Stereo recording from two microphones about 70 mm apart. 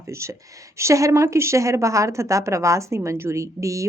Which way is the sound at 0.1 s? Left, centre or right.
Right.